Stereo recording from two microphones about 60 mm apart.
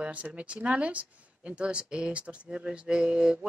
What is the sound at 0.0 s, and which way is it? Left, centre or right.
Speech, right.